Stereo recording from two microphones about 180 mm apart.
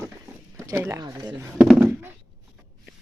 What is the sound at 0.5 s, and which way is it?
Speech, 15° right (ahead or behind).